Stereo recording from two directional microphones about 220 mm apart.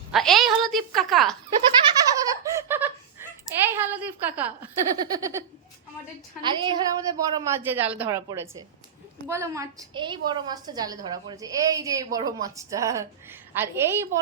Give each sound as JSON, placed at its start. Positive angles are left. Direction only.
{"t": 0.1, "sound": "a woman's voice", "side_deg": 0}
{"t": 1.8, "sound": "giggle", "side_deg": -15}
{"t": 3.7, "sound": "a woman's voice", "side_deg": -10}
{"t": 6.4, "sound": "a woman's voice", "side_deg": -20}